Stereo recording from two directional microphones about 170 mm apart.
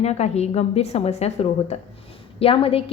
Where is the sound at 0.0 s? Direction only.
40° left (ahead or behind).